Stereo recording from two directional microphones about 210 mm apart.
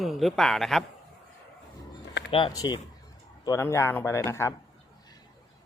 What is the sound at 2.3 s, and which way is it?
A man's voice, 20° left (ahead or behind).